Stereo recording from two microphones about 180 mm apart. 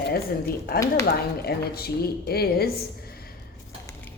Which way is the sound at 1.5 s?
60° left (ahead or behind).